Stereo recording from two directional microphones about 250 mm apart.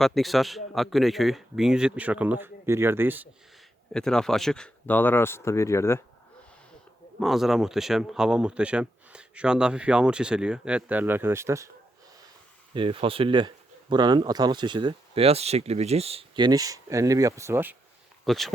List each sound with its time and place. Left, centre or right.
0.0 s a man's voice: centre
3.9 s speech: centre
7.2 s a man's voice: centre
12.7 s a man's voice: right; by 18.5 s centre